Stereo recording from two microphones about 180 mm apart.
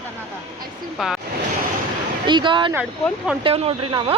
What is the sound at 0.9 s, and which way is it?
Speech, centre (ahead or behind).